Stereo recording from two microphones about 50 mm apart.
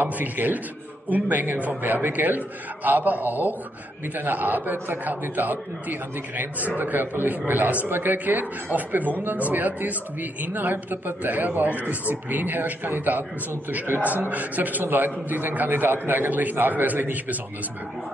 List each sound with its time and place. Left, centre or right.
0.0 s a man's voice: right